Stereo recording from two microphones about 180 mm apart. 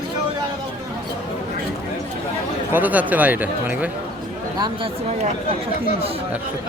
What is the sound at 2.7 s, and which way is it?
Speech, 10° right (ahead or behind).